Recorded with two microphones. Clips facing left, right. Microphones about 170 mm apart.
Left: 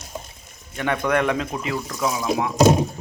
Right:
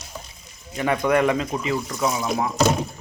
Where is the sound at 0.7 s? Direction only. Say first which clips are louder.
Right 2 dB; 5° right (ahead or behind).